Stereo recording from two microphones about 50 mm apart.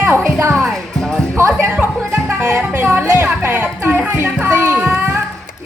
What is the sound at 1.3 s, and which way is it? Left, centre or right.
Music, right.